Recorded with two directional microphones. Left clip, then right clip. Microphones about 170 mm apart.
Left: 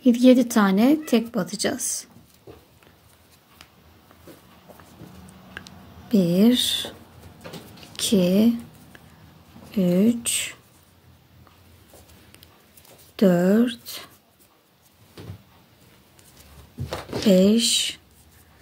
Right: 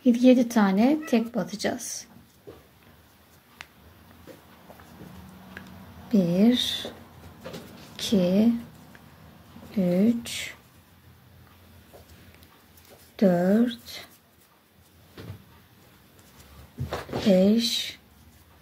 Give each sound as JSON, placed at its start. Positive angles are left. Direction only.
{"t": 0.0, "sound": "a woman's voice", "side_deg": 30}
{"t": 5.6, "sound": "a sound", "side_deg": 30}
{"t": 6.0, "sound": "speech", "side_deg": 30}
{"t": 7.9, "sound": "speech", "side_deg": 30}
{"t": 9.7, "sound": "a woman's voice", "side_deg": 30}
{"t": 13.1, "sound": "speech", "side_deg": 30}
{"t": 17.3, "sound": "speech", "side_deg": 30}